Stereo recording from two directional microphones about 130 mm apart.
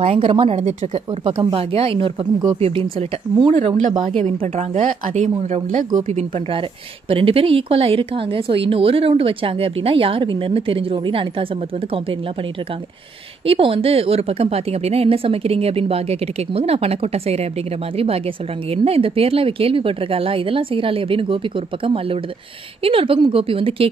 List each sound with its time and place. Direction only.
0.0 s a woman's voice: 45° right (ahead or behind)
4.8 s speech: 75° right (ahead or behind)
6.0 s a woman's voice: 45° right (ahead or behind)
13.5 s a woman's voice: 45° right (ahead or behind)